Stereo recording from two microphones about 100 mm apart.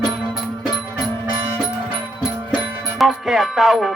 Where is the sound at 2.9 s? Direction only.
Centre (ahead or behind).